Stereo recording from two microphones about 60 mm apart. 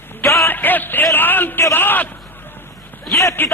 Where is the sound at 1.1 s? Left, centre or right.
Left.